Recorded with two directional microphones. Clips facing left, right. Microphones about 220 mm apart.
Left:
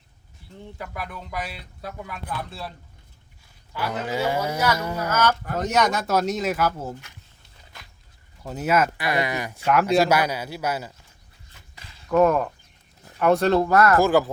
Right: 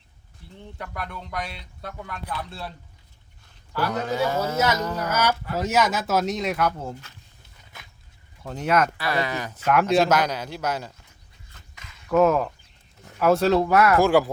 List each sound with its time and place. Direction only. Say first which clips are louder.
0.8 s a man's voice: even; 5° left (ahead or behind)
5.1 s a man's voice: left 2 dB; 10° right (ahead or behind); by 6.9 s 5° left (ahead or behind)
8.4 s a man's voice: even; 5° left (ahead or behind)
11.7 s a sound: left 1 dB; 30° left (ahead or behind)
12.0 s a man's voice: even; 5° right (ahead or behind)